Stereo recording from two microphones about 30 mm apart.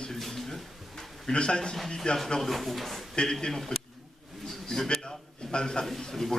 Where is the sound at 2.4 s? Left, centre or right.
Centre.